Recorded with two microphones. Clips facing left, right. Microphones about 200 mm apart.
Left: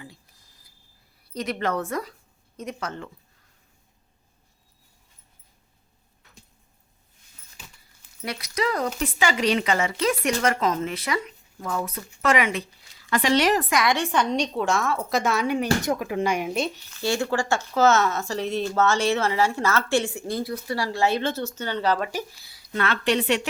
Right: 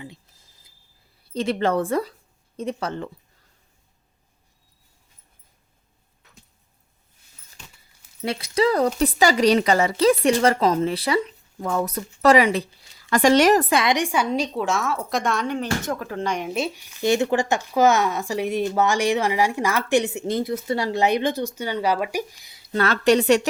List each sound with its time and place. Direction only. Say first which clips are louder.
0.0 s a sound: right 5 dB; 25° right (ahead or behind)
1.2 s a woman's voice: right 5 dB; 25° right (ahead or behind)
7.6 s keys jangling: right 1 dB; 5° left (ahead or behind)
8.2 s a woman's voice: right 6 dB; 30° right (ahead or behind)
13.1 s a woman's voice: right 5 dB; 45° right (ahead or behind)
13.7 s a woman's voice: right 2 dB; 30° right (ahead or behind)
13.9 s a woman's voice: right 1 dB; 10° right (ahead or behind)
22.7 s speech: right 6 dB; 40° right (ahead or behind)